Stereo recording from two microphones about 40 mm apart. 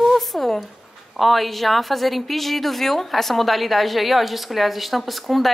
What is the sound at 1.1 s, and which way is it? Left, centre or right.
A woman's voice, centre.